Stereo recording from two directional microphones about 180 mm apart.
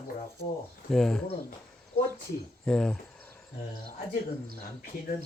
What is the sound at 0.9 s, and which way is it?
Speech, 5° left (ahead or behind).